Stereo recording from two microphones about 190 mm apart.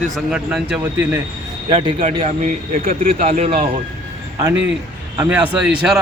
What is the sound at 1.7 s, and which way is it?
A man's voice, 30° right (ahead or behind).